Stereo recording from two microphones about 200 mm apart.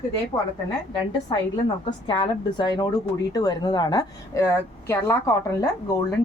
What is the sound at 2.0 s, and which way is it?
A woman's voice, 25° left (ahead or behind).